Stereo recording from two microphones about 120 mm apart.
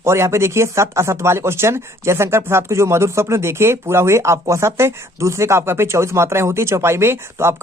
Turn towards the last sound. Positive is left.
turn(degrees=-20)  # may be behind; listen again after turning